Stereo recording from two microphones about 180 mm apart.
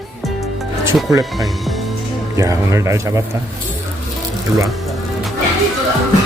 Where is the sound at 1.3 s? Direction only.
Centre (ahead or behind).